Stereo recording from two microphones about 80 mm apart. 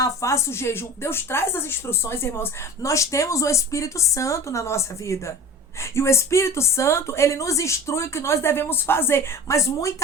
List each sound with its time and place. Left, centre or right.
0.0 s speech: left